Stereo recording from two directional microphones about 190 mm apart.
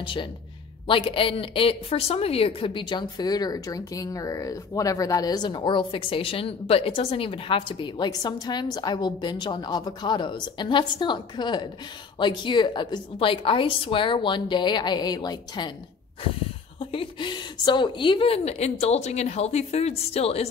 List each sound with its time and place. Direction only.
0.0 s a woman's voice: 25° left (ahead or behind)
16.8 s speech: 30° left (ahead or behind)